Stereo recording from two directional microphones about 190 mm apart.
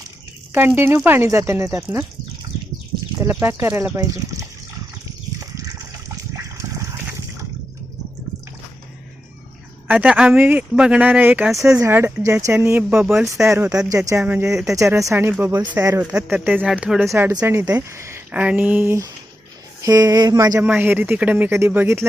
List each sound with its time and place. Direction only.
0.8 s speech: 10° right (ahead or behind)
3.2 s speech: 10° right (ahead or behind)
6.3 s water: 15° right (ahead or behind)
9.8 s speech: 10° right (ahead or behind)